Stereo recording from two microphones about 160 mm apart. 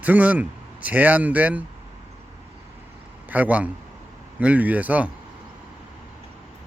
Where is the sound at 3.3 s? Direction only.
10° right (ahead or behind).